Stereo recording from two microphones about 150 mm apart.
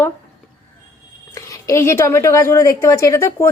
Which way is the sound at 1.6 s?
20° left (ahead or behind).